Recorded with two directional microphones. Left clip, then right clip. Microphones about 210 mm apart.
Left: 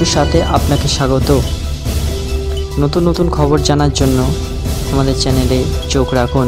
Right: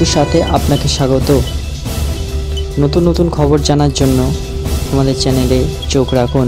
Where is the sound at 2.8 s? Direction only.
Centre (ahead or behind).